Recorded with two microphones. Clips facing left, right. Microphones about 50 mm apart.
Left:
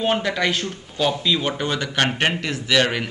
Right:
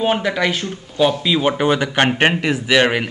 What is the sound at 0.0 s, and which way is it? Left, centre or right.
Speech, centre.